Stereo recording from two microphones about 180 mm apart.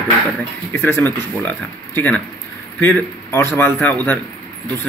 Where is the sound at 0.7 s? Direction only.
15° left (ahead or behind).